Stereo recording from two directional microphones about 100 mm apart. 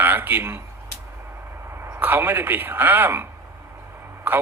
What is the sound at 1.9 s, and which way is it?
A man's voice, 20° right (ahead or behind).